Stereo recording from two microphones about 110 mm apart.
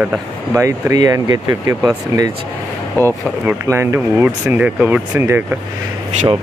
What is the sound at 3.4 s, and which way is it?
Speech, 25° right (ahead or behind).